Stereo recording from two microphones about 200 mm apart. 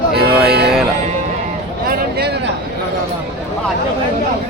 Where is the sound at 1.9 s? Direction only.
55° right (ahead or behind).